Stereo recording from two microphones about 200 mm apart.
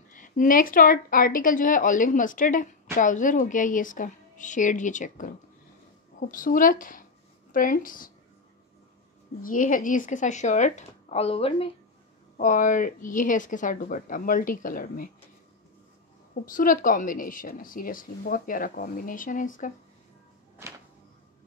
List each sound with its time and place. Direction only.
0.1 s a woman's voice: 40° left (ahead or behind)
9.4 s a woman's voice: 40° left (ahead or behind)
12.4 s a woman's voice: 40° left (ahead or behind)
16.5 s speech: 45° left (ahead or behind)